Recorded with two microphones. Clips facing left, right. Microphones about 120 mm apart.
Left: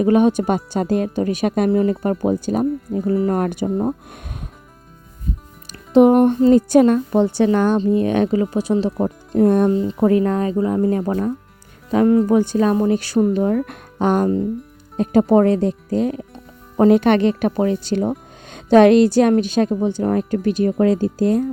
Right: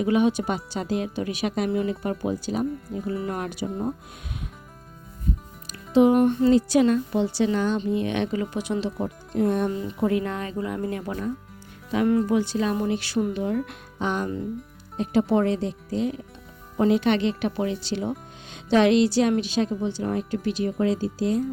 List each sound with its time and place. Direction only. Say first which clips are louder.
0.0 s speech: left 7 dB; 45° left (ahead or behind)
5.9 s speech: left 6 dB; 55° left (ahead or behind); by 12.3 s 35° left (ahead or behind)
12.3 s speech: left 7 dB; 50° left (ahead or behind)
13.4 s speech: left 7 dB; 55° left (ahead or behind)